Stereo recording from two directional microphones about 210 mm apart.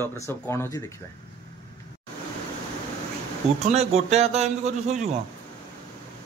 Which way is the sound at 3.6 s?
30° right (ahead or behind).